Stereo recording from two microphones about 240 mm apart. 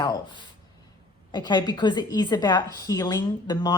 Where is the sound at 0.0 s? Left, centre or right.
Centre.